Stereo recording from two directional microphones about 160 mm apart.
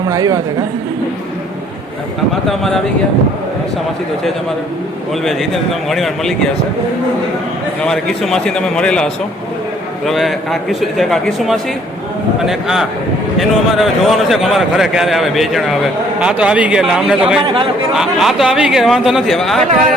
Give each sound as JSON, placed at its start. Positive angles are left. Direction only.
{"t": 0.1, "sound": "a woman's voice", "side_deg": -25}
{"t": 2.5, "sound": "a man's voice", "side_deg": 0}
{"t": 5.2, "sound": "a man's voice", "side_deg": 0}
{"t": 7.8, "sound": "a man's voice", "side_deg": 5}
{"t": 10.1, "sound": "a man's voice", "side_deg": 0}